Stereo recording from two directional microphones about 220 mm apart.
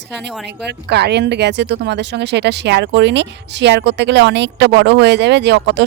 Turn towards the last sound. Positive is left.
turn(degrees=-50)  # may be behind; listen again after turning